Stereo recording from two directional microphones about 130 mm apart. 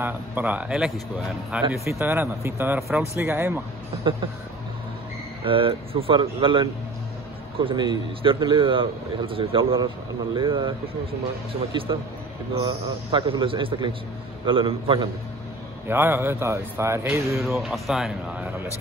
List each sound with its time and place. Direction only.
0.0 s a man's voice: 15° right (ahead or behind)
1.9 s a man's voice: 20° right (ahead or behind)
5.4 s a man's voice: 40° right (ahead or behind)
15.9 s a man's voice: 15° right (ahead or behind)
17.6 s speech: centre (ahead or behind)